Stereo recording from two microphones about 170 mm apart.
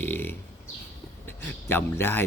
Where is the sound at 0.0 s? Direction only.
10° left (ahead or behind).